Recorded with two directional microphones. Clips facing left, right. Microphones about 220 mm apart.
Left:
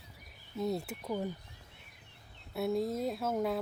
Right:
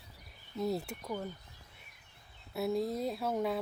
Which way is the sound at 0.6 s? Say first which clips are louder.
Even; centre (ahead or behind).